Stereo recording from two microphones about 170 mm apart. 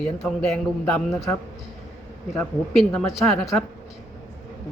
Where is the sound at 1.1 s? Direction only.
20° left (ahead or behind).